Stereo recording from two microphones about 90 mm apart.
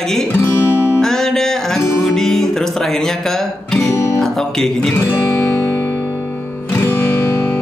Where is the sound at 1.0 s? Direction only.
5° left (ahead or behind).